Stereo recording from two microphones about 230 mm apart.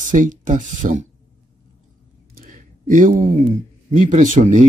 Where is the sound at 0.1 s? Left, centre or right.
Right.